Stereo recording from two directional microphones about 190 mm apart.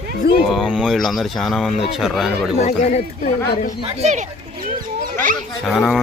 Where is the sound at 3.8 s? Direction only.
35° right (ahead or behind).